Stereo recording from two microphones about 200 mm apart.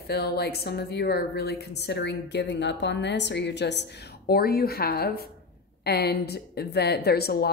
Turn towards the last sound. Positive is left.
turn(degrees=55)  # may be behind; listen again after turning